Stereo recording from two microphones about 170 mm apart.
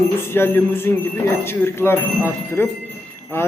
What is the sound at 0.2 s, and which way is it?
Speech, 15° left (ahead or behind).